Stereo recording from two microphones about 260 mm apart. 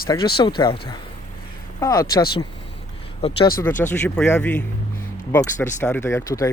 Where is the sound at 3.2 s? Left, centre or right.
Left.